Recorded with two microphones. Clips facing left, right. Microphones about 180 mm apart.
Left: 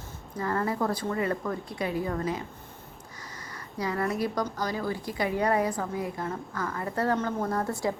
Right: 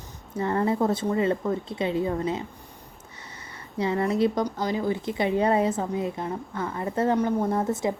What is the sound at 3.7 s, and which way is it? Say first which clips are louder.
A woman's voice: right 5 dB; 25° right (ahead or behind).